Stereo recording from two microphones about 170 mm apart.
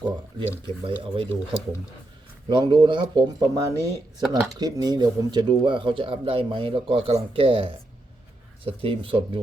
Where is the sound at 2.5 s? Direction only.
25° right (ahead or behind).